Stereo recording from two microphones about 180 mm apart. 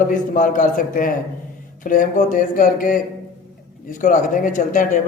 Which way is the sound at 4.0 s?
45° left (ahead or behind).